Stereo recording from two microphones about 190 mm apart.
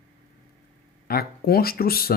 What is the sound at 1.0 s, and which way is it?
Speech, 55° left (ahead or behind).